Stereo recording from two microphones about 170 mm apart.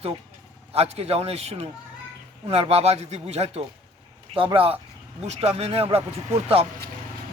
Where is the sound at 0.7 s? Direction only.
35° right (ahead or behind).